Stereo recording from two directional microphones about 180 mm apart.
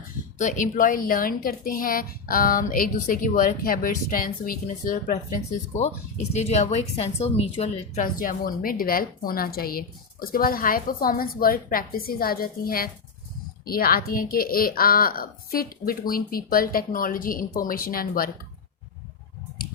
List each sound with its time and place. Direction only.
0.3 s a woman's voice: 45° left (ahead or behind)
8.0 s a woman's voice: 50° left (ahead or behind)